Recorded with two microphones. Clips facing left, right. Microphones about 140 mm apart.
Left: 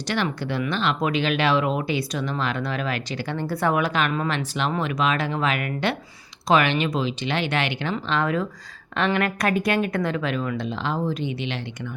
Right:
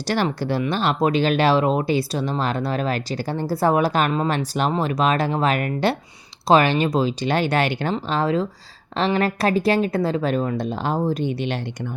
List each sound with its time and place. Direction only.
0.1 s speech: 35° right (ahead or behind)